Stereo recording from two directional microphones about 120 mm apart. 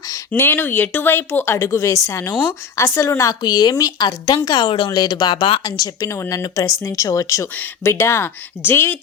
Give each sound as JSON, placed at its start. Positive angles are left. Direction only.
{"t": 0.3, "sound": "speech", "side_deg": 15}